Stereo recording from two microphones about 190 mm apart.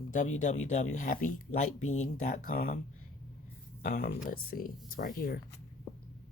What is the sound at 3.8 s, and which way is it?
Speech, 50° left (ahead or behind).